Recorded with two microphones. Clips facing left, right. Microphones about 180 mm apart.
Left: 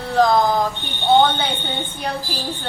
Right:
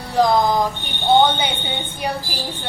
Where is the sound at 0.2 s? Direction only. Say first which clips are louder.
Even; 15° right (ahead or behind).